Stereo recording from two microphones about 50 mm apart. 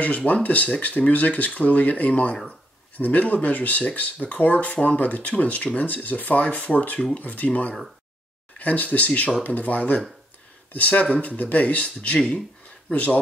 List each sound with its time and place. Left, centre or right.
0.0 s speech: left